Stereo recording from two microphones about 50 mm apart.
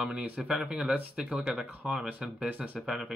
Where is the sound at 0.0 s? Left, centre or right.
Centre.